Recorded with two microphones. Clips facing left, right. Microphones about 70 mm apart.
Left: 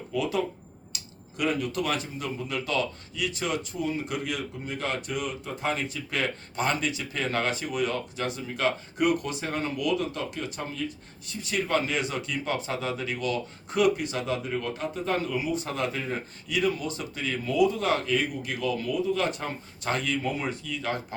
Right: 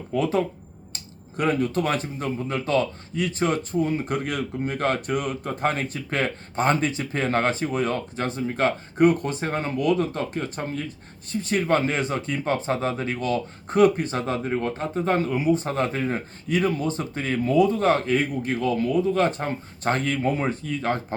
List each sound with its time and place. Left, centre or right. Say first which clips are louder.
0.1 s speech: right 5 dB; right